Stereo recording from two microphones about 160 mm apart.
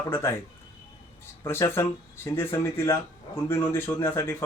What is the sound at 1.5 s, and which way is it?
Speech, 15° left (ahead or behind).